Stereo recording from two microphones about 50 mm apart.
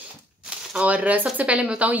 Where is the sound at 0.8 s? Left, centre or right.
Right.